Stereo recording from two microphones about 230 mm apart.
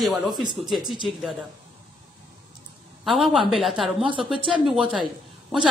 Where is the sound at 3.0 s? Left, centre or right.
Centre.